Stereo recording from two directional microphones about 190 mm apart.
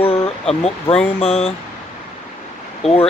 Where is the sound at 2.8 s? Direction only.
30° left (ahead or behind).